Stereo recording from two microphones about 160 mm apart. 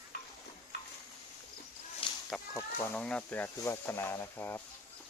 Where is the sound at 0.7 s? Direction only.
90° left.